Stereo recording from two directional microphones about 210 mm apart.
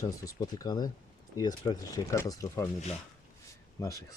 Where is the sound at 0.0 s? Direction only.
15° left (ahead or behind).